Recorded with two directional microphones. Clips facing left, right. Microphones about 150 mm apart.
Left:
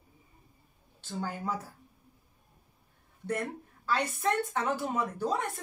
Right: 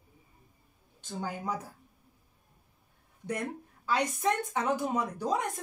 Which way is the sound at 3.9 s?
15° right (ahead or behind).